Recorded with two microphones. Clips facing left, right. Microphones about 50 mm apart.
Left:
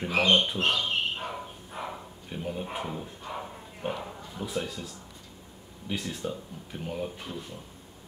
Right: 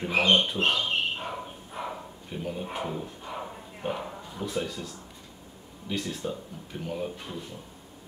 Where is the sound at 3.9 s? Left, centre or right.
Centre.